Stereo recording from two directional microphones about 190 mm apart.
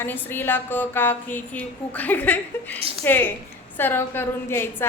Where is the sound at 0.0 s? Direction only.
10° left (ahead or behind).